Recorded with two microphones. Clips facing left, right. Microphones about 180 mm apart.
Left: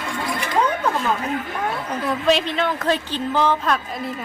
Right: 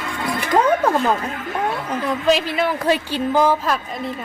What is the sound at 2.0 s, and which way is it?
A woman's voice, centre (ahead or behind).